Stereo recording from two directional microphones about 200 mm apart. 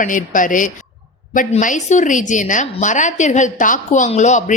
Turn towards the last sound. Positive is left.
turn(degrees=35)  # may be behind; listen again after turning